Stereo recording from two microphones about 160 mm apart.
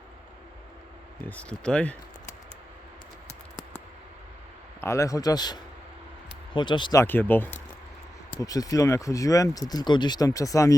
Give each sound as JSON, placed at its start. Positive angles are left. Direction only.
{"t": 1.2, "sound": "speech", "side_deg": 10}
{"t": 4.8, "sound": "speech", "side_deg": 20}
{"t": 7.0, "sound": "speech", "side_deg": 15}